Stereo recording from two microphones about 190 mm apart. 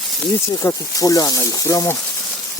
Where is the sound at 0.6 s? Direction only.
15° left (ahead or behind).